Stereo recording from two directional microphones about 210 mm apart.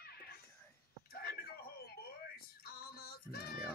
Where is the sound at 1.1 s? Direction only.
50° left (ahead or behind).